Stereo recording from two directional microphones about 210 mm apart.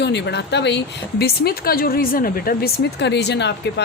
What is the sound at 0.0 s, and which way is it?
Speech, 55° left (ahead or behind).